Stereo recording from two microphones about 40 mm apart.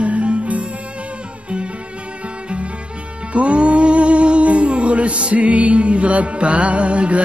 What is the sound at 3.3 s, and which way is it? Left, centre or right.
Music, right.